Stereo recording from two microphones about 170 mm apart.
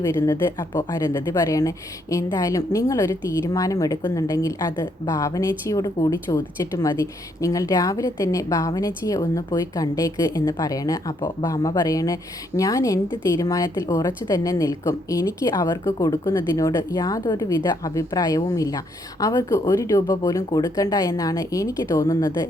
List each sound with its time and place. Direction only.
0.7 s a woman's voice: 25° left (ahead or behind)